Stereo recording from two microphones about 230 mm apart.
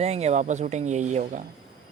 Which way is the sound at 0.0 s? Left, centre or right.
Right.